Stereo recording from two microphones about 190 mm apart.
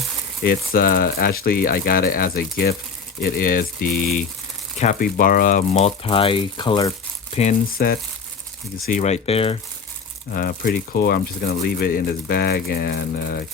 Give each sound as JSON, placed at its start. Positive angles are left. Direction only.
{"t": 0.4, "sound": "speech", "side_deg": 50}
{"t": 7.7, "sound": "speech", "side_deg": 50}
{"t": 8.9, "sound": "speech", "side_deg": 40}
{"t": 10.3, "sound": "speech", "side_deg": 50}